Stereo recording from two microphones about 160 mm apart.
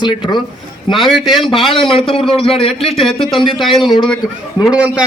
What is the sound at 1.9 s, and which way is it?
A man's voice, 35° left (ahead or behind).